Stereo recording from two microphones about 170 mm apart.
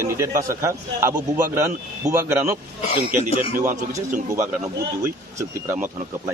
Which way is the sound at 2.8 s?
35° left (ahead or behind).